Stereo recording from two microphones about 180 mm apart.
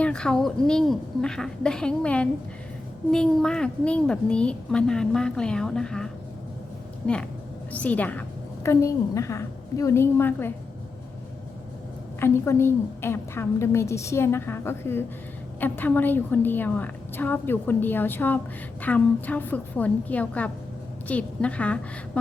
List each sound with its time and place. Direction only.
0.0 s a woman's voice: 5° left (ahead or behind)
7.7 s a woman's voice: 10° left (ahead or behind)
12.2 s a woman's voice: 15° left (ahead or behind)